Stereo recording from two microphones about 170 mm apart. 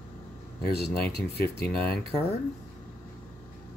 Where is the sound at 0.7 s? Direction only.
35° right (ahead or behind).